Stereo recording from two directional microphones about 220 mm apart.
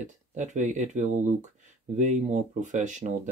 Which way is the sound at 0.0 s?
35° right (ahead or behind).